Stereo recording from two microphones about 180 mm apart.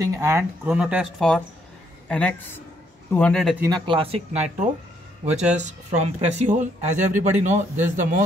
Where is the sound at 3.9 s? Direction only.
30° right (ahead or behind).